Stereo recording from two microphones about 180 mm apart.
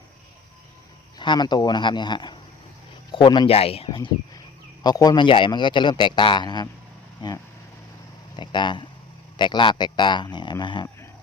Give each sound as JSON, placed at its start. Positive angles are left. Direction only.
{"t": 1.2, "sound": "a man's voice", "side_deg": 25}
{"t": 8.4, "sound": "a man's voice", "side_deg": 25}